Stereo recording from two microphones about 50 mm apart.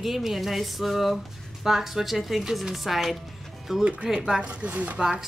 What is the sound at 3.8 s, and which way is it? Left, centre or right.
Speech, right.